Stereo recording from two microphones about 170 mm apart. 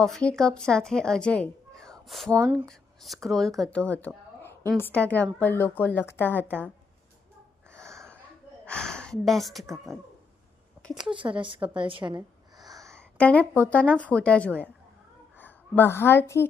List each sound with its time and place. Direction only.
0.0 s a woman's voice: 5° left (ahead or behind)
2.3 s speech: 10° right (ahead or behind)
2.6 s a woman's voice: centre (ahead or behind)
7.7 s a sound: 15° right (ahead or behind)
8.6 s speech: 5° left (ahead or behind)
11.1 s speech: 30° right (ahead or behind)
12.0 s gasp: 25° right (ahead or behind)
13.0 s a sound: 10° left (ahead or behind)
13.5 s a woman's voice: 10° left (ahead or behind)